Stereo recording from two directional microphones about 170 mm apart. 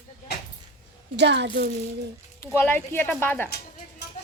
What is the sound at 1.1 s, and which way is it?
Speech, 90° right.